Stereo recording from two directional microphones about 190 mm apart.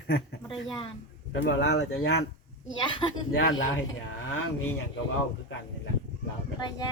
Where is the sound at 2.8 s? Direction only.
25° left (ahead or behind).